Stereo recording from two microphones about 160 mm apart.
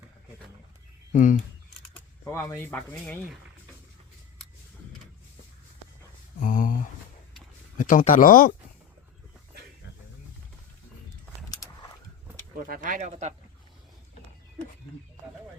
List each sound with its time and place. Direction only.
1.1 s speech: 55° left (ahead or behind)
2.2 s speech: 15° left (ahead or behind)
6.4 s a sound: 55° left (ahead or behind)
7.8 s speech: 55° left (ahead or behind)
12.5 s speech: 60° right (ahead or behind); by 13.3 s 45° right (ahead or behind)